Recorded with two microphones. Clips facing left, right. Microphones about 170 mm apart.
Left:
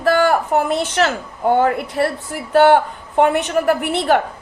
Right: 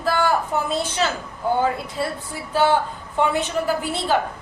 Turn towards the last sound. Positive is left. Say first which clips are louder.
# left 6 dB
turn(degrees=65)  # may be behind; listen again after turning